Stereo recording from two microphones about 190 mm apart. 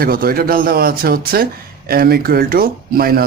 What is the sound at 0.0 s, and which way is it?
Speech, 50° right (ahead or behind).